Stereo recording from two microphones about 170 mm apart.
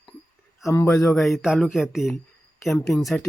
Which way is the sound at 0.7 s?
20° left (ahead or behind).